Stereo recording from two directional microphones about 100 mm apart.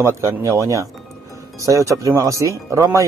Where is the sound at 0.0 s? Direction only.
30° right (ahead or behind).